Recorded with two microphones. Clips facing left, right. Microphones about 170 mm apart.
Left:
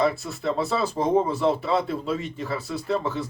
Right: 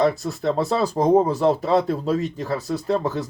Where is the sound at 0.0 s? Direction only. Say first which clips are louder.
Right 4 dB; 40° right (ahead or behind).